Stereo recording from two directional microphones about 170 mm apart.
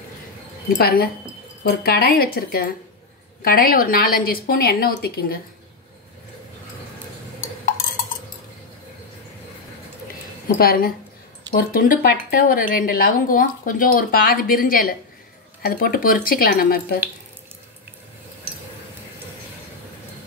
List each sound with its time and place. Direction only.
0.7 s a woman's voice: 65° left (ahead or behind)
10.6 s a woman's voice: 60° left (ahead or behind)